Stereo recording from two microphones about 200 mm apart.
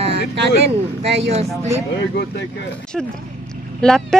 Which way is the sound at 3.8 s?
Centre (ahead or behind).